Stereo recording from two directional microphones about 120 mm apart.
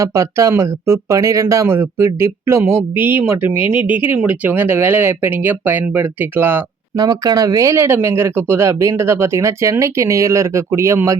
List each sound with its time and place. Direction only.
0.0 s speech: 25° right (ahead or behind)
6.9 s speech: 30° right (ahead or behind)